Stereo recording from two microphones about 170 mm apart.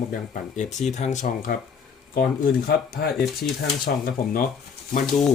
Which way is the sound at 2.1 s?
60° left (ahead or behind).